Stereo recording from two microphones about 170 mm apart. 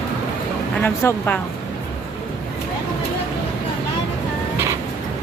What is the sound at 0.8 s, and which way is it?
Speech, 15° left (ahead or behind).